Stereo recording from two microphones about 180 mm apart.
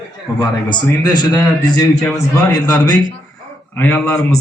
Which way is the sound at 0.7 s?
25° left (ahead or behind).